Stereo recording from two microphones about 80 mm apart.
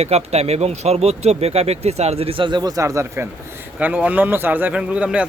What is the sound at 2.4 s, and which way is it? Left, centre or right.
Speech, right.